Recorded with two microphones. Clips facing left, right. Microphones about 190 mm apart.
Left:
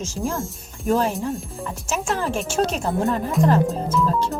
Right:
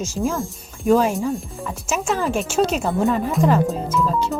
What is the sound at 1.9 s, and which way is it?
Speech, centre (ahead or behind).